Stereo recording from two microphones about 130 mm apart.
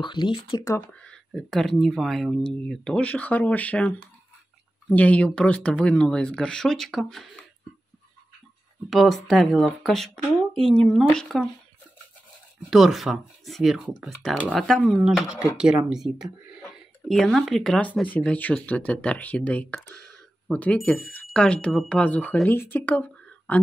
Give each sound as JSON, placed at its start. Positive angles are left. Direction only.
{"t": 0.0, "sound": "speech", "side_deg": 35}
{"t": 1.0, "sound": "speech", "side_deg": 5}
{"t": 8.9, "sound": "speech", "side_deg": 0}
{"t": 12.6, "sound": "speech", "side_deg": 0}